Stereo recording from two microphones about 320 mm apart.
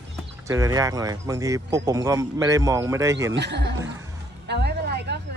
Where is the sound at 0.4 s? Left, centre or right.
Centre.